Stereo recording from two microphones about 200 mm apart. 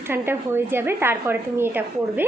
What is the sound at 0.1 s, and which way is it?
Speech, 10° right (ahead or behind).